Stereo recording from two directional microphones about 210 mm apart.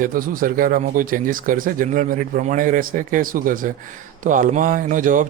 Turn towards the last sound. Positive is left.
turn(degrees=-40)  # may be behind; listen again after turning